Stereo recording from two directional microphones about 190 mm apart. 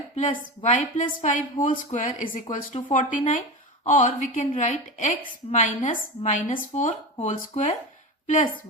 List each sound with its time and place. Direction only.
0.6 s a woman's voice: 40° left (ahead or behind)